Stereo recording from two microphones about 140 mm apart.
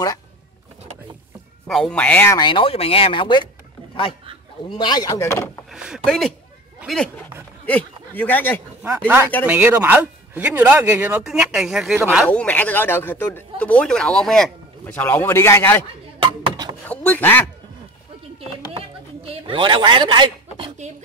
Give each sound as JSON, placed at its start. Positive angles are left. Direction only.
{"t": 1.7, "sound": "speech", "side_deg": 5}
{"t": 2.3, "sound": "speech", "side_deg": 35}
{"t": 4.6, "sound": "speech", "side_deg": 35}
{"t": 5.7, "sound": "speech", "side_deg": -5}
{"t": 7.6, "sound": "a man's voice", "side_deg": 10}
{"t": 8.8, "sound": "speech", "side_deg": -15}
{"t": 12.3, "sound": "speech", "side_deg": 10}
{"t": 14.9, "sound": "speech", "side_deg": 15}
{"t": 16.2, "sound": "a sound", "side_deg": -35}
{"t": 16.8, "sound": "speech", "side_deg": 10}
{"t": 18.7, "sound": "speech", "side_deg": -40}